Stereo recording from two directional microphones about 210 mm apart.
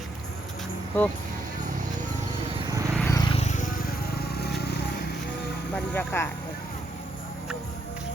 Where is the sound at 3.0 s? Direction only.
15° left (ahead or behind); by 5.2 s 50° left (ahead or behind).